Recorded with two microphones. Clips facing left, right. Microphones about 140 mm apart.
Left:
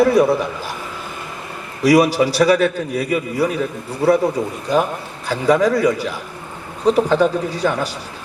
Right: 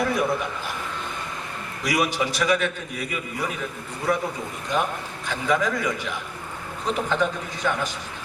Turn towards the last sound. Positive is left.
turn(degrees=35)  # may be behind; listen again after turning